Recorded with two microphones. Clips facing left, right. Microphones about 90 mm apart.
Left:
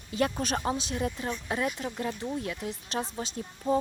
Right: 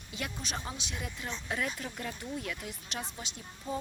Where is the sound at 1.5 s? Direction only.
25° left (ahead or behind).